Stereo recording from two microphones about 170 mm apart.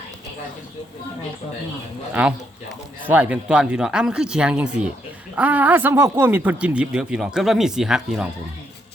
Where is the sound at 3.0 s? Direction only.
10° right (ahead or behind).